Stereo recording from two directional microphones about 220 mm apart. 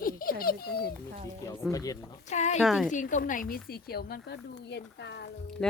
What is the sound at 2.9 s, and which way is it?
Speech, 35° left (ahead or behind).